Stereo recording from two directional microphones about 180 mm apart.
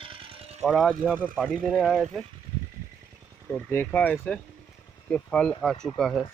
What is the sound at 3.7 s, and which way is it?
Speech, 10° left (ahead or behind).